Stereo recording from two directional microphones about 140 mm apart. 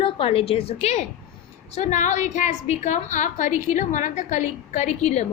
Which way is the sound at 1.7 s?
60° left (ahead or behind).